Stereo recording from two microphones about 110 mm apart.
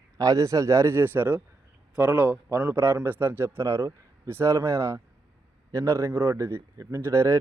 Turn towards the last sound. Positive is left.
turn(degrees=-25)  # may be behind; listen again after turning